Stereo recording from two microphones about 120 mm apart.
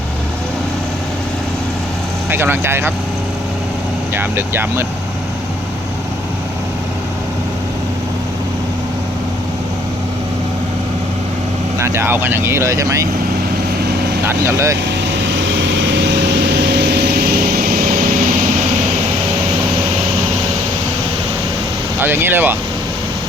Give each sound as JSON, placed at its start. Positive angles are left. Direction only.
{"t": 2.3, "sound": "speech", "side_deg": -20}
{"t": 4.1, "sound": "speech", "side_deg": -15}
{"t": 11.8, "sound": "speech", "side_deg": -20}
{"t": 14.3, "sound": "speech", "side_deg": -20}
{"t": 22.0, "sound": "speech", "side_deg": -20}